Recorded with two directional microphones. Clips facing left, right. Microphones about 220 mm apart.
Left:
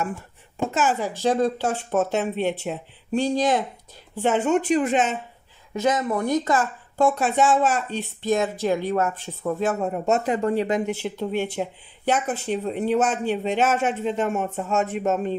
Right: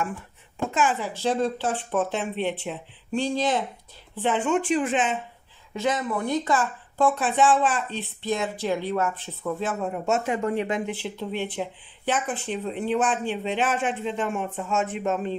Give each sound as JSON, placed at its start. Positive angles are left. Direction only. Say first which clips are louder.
{"t": 0.7, "sound": "speech", "louder": "left 1 dB", "side_deg": 40}